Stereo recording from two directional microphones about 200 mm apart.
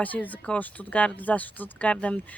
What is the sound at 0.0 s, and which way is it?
Speech, 10° left (ahead or behind).